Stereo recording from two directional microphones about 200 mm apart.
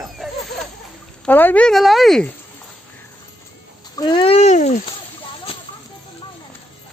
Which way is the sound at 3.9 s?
20° left (ahead or behind).